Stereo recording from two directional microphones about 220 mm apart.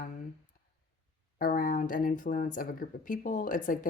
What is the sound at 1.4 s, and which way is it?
Speech, 40° left (ahead or behind).